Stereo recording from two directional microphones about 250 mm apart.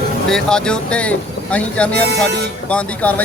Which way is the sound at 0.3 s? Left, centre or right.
Centre.